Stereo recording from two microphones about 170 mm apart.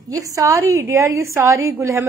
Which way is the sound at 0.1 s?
20° right (ahead or behind).